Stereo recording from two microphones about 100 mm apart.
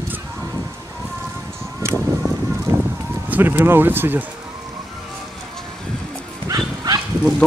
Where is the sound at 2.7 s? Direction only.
25° right (ahead or behind).